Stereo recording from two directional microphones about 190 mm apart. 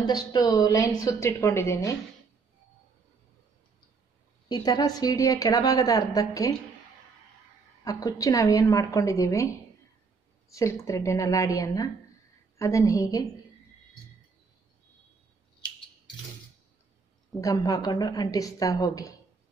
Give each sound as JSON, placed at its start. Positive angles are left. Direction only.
{"t": 0.0, "sound": "a woman's voice", "side_deg": 20}
{"t": 4.5, "sound": "a woman's voice", "side_deg": 20}
{"t": 7.8, "sound": "a woman's voice", "side_deg": 20}
{"t": 10.5, "sound": "a woman's voice", "side_deg": 15}
{"t": 17.4, "sound": "a woman's voice", "side_deg": 20}